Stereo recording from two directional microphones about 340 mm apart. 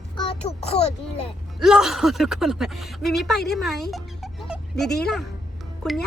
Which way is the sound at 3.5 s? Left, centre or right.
Centre.